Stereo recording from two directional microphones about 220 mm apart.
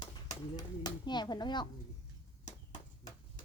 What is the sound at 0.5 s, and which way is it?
Speech, 20° left (ahead or behind).